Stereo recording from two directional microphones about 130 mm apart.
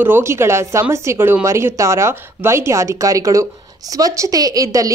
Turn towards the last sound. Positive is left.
turn(degrees=-25)  # may be behind; listen again after turning